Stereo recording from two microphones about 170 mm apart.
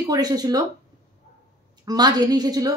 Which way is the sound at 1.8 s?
25° right (ahead or behind).